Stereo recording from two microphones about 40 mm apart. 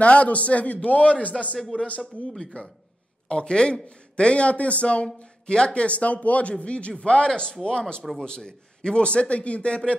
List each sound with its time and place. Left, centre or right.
0.0 s a man's voice: left
5.0 s speech: left
5.9 s a man's voice: left